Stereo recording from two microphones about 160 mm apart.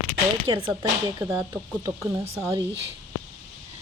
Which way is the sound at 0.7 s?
20° right (ahead or behind).